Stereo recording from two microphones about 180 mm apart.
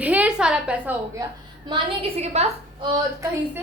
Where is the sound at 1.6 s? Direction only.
30° right (ahead or behind).